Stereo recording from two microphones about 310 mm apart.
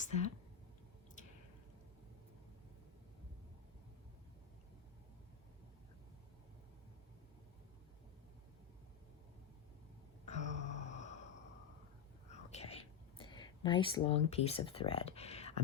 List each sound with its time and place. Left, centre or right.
0.0 s speech: left
10.2 s gasp: left
12.3 s whispering: left
13.1 s speech: centre